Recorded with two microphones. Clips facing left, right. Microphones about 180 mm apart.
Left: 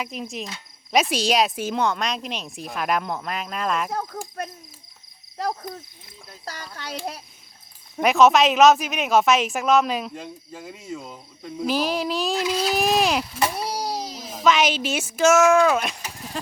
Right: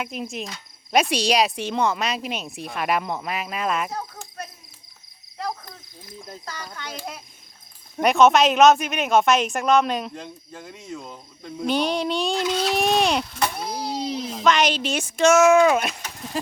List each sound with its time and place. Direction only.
0.0 s speech: centre (ahead or behind)
6.7 s a child's voice: 35° left (ahead or behind)
7.9 s speech: centre (ahead or behind)
16.0 s a sound: 10° left (ahead or behind)